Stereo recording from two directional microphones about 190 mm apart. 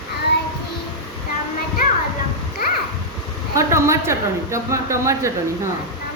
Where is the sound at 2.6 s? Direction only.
50° left (ahead or behind).